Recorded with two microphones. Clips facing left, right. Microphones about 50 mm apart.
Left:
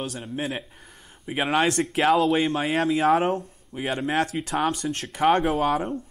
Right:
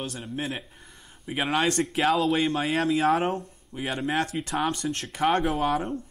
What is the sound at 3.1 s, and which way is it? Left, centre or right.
Speech, centre.